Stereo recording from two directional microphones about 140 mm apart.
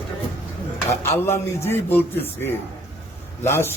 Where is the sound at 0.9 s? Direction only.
20° left (ahead or behind).